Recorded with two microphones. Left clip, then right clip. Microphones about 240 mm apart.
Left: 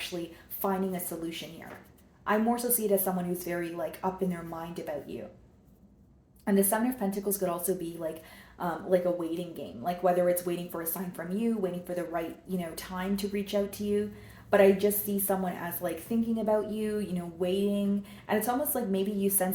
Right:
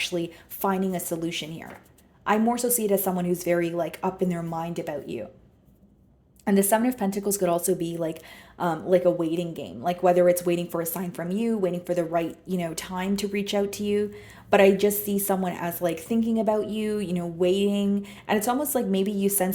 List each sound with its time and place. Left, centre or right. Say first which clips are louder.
0.1 s a woman's voice: right 8 dB; right
6.4 s a woman's voice: right 5 dB; right